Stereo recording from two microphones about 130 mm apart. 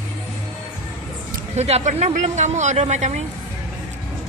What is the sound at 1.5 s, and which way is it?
Speech, 55° right (ahead or behind).